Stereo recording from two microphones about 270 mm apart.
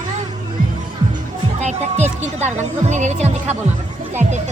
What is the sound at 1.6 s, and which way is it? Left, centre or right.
Speech, right.